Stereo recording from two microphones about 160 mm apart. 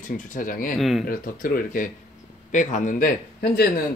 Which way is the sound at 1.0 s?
60° left (ahead or behind).